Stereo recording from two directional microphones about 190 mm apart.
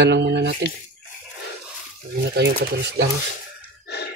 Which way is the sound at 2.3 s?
60° right (ahead or behind).